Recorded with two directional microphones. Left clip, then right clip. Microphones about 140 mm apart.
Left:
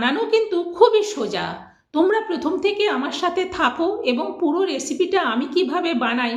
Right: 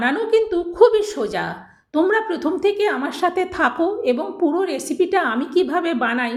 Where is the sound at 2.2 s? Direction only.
35° right (ahead or behind).